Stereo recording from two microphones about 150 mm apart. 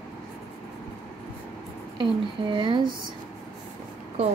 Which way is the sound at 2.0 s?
35° right (ahead or behind).